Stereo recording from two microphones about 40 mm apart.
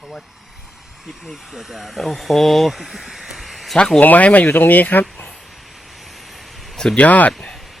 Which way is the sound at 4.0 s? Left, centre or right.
Left.